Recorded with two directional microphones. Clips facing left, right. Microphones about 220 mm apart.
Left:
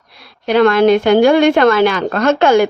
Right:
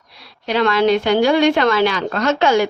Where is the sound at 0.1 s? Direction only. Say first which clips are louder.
Left 6 dB; 50° left (ahead or behind).